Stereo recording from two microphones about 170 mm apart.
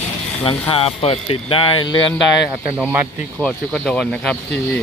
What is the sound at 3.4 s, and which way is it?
Speech, 5° left (ahead or behind).